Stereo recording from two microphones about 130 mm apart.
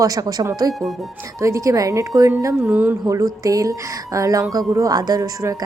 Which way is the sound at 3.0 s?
25° right (ahead or behind).